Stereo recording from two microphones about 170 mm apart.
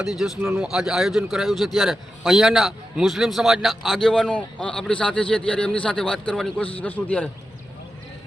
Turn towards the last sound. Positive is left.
turn(degrees=10)  # may be behind; listen again after turning